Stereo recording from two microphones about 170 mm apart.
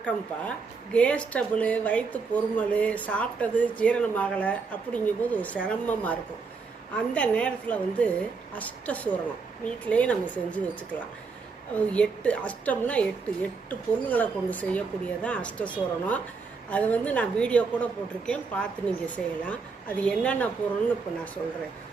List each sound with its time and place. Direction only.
0.9 s speech: 5° left (ahead or behind)
11.7 s speech: 5° left (ahead or behind)